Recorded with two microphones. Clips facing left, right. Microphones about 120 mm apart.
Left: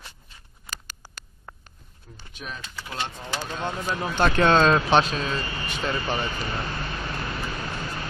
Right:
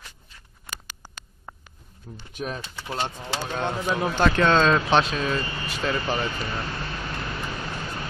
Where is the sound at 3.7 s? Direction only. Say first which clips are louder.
Right 5 dB; 20° right (ahead or behind).